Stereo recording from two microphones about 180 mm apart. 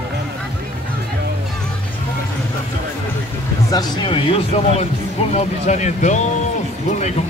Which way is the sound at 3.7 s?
20° left (ahead or behind).